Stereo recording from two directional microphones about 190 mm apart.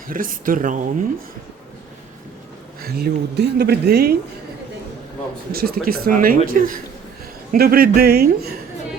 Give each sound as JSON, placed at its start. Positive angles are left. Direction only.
{"t": 0.1, "sound": "speech", "side_deg": -45}
{"t": 2.8, "sound": "speech", "side_deg": -55}
{"t": 5.5, "sound": "speech", "side_deg": -50}